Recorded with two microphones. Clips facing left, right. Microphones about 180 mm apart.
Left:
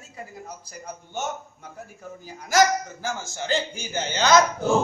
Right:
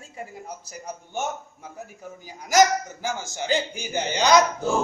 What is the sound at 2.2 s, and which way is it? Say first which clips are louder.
A man's voice: right 1 dB; 15° right (ahead or behind).